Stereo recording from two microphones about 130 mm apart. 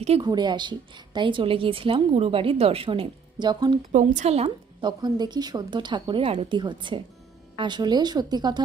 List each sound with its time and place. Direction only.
0.2 s speech: 35° right (ahead or behind)
3.9 s a woman's voice: 70° right (ahead or behind); by 4.5 s 55° right (ahead or behind)
4.8 s speech: 35° right (ahead or behind)